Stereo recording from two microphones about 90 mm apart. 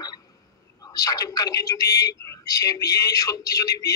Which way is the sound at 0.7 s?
45° left (ahead or behind).